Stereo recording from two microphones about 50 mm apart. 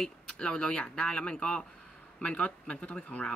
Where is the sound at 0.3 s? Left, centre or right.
Centre.